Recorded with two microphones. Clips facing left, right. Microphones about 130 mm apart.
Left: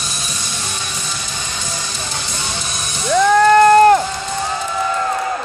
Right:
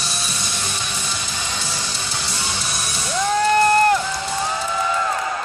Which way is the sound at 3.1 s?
70° left (ahead or behind).